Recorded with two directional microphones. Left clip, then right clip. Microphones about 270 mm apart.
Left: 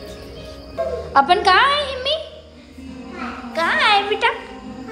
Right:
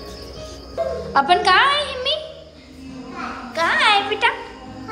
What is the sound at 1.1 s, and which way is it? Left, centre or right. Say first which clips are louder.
A woman's voice: left 1 dB; centre.